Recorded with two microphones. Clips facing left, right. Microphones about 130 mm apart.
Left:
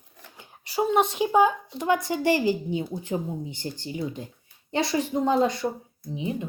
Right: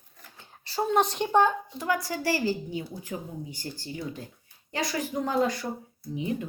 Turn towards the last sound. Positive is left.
turn(degrees=20)  # may be behind; listen again after turning